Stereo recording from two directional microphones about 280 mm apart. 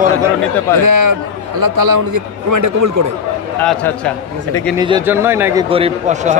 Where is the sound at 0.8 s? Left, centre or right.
Right.